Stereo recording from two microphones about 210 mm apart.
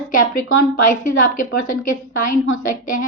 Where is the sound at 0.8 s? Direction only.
40° left (ahead or behind).